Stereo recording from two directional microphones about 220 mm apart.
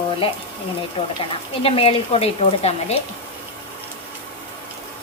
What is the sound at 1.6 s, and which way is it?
Speech, 25° left (ahead or behind).